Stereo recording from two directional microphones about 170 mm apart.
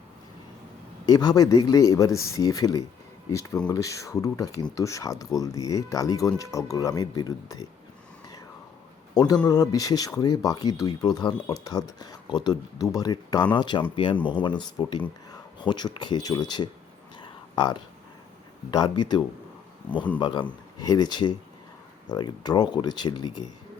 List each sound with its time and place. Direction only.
1.0 s speech: 25° left (ahead or behind)
9.5 s speech: 20° left (ahead or behind)
17.2 s a sound: 25° left (ahead or behind)
18.7 s speech: 25° left (ahead or behind)